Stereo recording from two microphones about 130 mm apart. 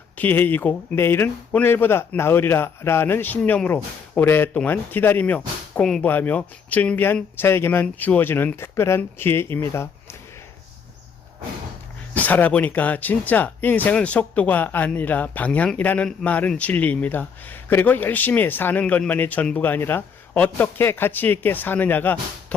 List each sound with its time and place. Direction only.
0.2 s speech: 15° left (ahead or behind)
12.1 s speech: 10° left (ahead or behind)